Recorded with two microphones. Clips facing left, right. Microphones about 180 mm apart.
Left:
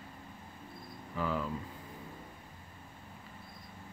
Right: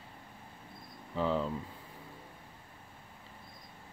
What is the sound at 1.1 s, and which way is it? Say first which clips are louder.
Speech: right 3 dB; 25° right (ahead or behind).